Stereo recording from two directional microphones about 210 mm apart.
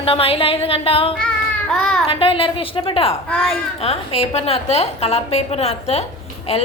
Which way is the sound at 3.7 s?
30° left (ahead or behind).